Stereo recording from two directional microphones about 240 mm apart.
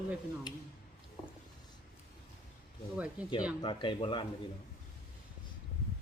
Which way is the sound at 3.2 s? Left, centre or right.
Centre.